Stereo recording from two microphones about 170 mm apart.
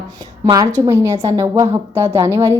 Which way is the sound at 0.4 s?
20° right (ahead or behind).